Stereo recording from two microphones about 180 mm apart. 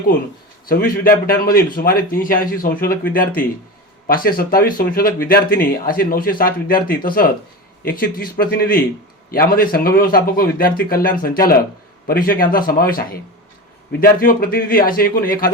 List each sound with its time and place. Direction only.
0.7 s speech: 55° left (ahead or behind)